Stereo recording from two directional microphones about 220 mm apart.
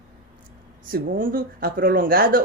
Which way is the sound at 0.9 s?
40° right (ahead or behind).